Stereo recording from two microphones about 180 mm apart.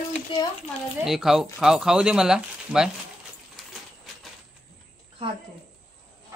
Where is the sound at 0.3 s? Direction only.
30° left (ahead or behind).